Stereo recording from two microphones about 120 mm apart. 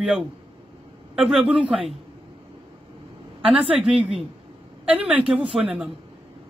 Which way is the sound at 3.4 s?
10° right (ahead or behind).